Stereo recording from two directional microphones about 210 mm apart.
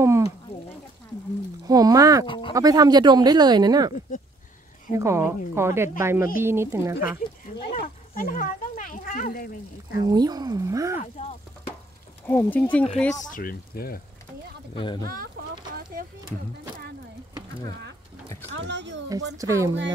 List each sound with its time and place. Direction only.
0.0 s a sound: 15° right (ahead or behind)
1.7 s a sound: 15° right (ahead or behind)
2.2 s speech: 25° left (ahead or behind)
2.5 s speech: 15° right (ahead or behind)
4.9 s speech: 15° right (ahead or behind)
7.5 s speech: 45° left (ahead or behind)
9.9 s speech: 20° right (ahead or behind)
11.0 s speech: 30° left (ahead or behind)
12.3 s speech: 10° left (ahead or behind)
13.1 s speech: 40° left (ahead or behind)
18.5 s speech: 60° right (ahead or behind)
19.3 s speech: 15° right (ahead or behind)